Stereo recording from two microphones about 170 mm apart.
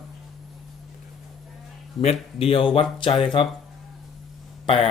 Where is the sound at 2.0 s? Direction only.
35° left (ahead or behind).